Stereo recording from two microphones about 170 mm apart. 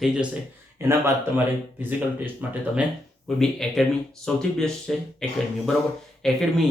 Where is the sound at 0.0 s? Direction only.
5° right (ahead or behind).